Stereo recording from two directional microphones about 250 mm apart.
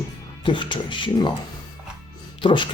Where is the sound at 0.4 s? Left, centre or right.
Centre.